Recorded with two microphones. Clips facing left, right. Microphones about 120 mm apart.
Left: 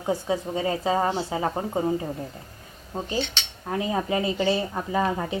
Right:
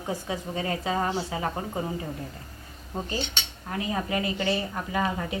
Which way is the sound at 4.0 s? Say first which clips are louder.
Left 3 dB; 25° left (ahead or behind).